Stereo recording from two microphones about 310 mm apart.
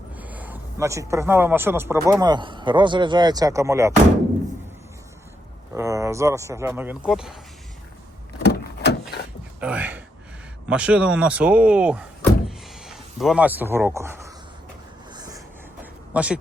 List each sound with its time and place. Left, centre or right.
0.2 s a man's voice: centre
5.7 s speech: centre
8.4 s vehicle: left
9.6 s a sound: centre
10.7 s speech: centre
12.5 s a sound: centre